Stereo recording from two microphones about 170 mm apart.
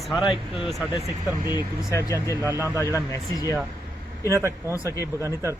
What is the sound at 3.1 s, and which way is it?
Speech, 20° left (ahead or behind).